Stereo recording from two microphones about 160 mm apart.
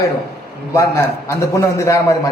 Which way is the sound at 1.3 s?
20° left (ahead or behind).